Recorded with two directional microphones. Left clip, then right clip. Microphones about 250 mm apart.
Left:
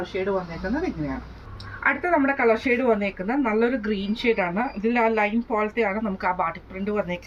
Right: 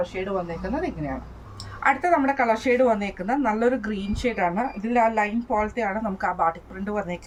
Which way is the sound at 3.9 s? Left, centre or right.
Right.